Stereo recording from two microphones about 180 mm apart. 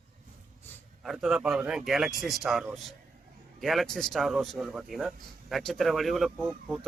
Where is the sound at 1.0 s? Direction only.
Centre (ahead or behind).